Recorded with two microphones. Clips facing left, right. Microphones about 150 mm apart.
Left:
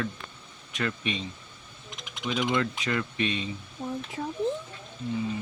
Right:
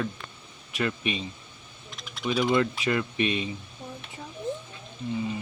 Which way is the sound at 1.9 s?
15° left (ahead or behind).